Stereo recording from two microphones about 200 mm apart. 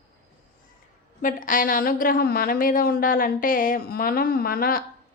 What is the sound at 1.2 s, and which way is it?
Speech, 40° left (ahead or behind).